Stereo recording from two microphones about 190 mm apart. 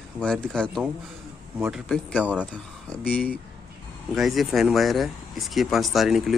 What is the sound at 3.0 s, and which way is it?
Speech, 5° left (ahead or behind).